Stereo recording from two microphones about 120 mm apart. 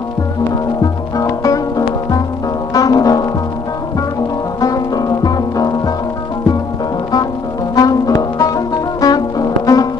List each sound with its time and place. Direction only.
1.1 s music: 30° left (ahead or behind)
2.7 s brass instrument: 30° left (ahead or behind)
4.6 s music: 30° left (ahead or behind)
7.7 s brass instrument: 30° left (ahead or behind)